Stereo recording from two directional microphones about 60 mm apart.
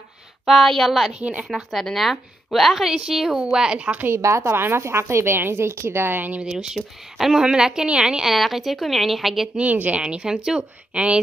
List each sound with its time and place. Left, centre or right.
0.5 s a woman's voice: centre
4.1 s speech: right
6.4 s a woman's voice: centre
9.6 s a woman's voice: right